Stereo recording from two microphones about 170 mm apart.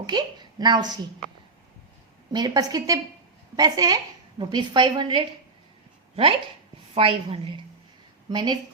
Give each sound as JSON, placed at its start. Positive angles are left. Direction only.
{"t": 0.0, "sound": "a woman's voice", "side_deg": -25}
{"t": 2.3, "sound": "a woman's voice", "side_deg": -25}
{"t": 6.9, "sound": "a woman's voice", "side_deg": -35}